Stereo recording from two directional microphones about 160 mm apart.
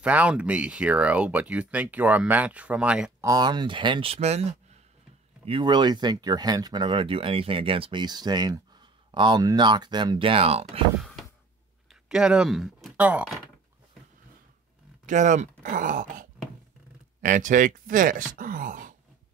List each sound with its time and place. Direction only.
0.0 s speech: 10° right (ahead or behind)
3.3 s speech: 25° right (ahead or behind)
11.9 s speech: 5° right (ahead or behind)
15.0 s speech: 50° right (ahead or behind)